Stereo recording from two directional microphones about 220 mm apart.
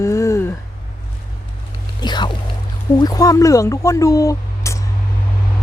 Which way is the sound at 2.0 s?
20° left (ahead or behind).